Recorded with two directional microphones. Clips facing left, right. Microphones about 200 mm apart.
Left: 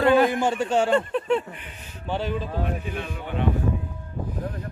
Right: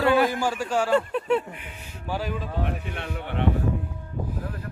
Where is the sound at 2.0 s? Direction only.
25° left (ahead or behind).